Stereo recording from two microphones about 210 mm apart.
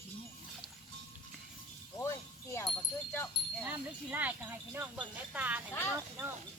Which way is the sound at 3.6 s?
10° right (ahead or behind).